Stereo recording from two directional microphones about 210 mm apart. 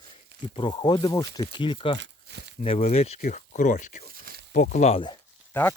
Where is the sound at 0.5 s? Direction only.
25° left (ahead or behind).